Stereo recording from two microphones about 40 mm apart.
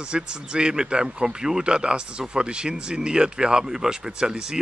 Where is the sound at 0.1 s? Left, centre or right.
Right.